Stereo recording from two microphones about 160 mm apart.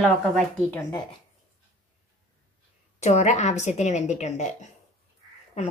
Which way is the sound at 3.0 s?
45° left (ahead or behind).